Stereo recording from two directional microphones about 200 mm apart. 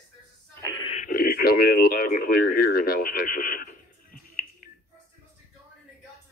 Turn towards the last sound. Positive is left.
turn(degrees=45)  # may be behind; listen again after turning